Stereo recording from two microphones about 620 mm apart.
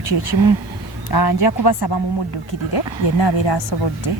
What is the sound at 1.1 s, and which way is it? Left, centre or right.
A woman's voice, left.